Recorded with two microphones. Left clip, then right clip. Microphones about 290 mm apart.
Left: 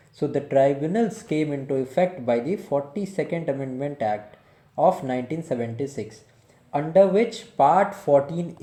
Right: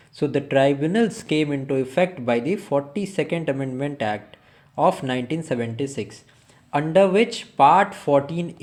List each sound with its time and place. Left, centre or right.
0.2 s speech: centre